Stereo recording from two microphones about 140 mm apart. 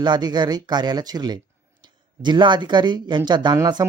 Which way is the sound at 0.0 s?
30° right (ahead or behind).